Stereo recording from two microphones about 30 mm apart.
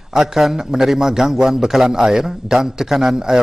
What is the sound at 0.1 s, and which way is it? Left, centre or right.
A man's voice, centre.